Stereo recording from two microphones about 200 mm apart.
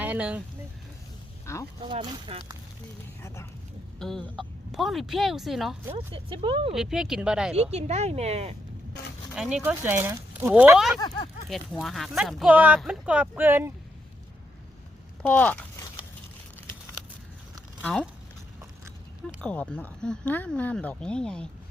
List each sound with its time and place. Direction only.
0.0 s speech: 5° right (ahead or behind)
1.5 s speech: 15° left (ahead or behind)
1.8 s speech: 25° right (ahead or behind)
4.0 s speech: centre (ahead or behind)
6.1 s speech: 25° right (ahead or behind)
6.7 s speech: centre (ahead or behind)
7.5 s speech: 35° right (ahead or behind)
9.3 s speech: 5° right (ahead or behind)
11.0 s speech: 25° left (ahead or behind)
11.4 s speech: centre (ahead or behind)
15.2 s speech: 5° left (ahead or behind)
17.8 s speech: 5° left (ahead or behind)
19.4 s speech: 5° left (ahead or behind)